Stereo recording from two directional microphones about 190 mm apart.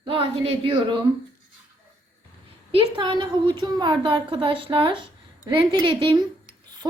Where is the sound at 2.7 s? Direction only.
25° right (ahead or behind).